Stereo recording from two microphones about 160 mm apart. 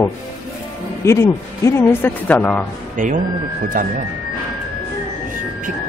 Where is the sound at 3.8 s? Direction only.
55° right (ahead or behind).